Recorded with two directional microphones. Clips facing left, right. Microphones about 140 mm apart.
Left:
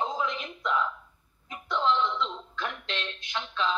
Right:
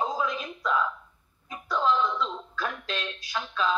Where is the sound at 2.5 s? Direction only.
20° left (ahead or behind).